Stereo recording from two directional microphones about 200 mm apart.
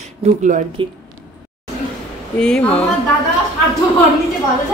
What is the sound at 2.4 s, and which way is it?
Speech, 5° left (ahead or behind).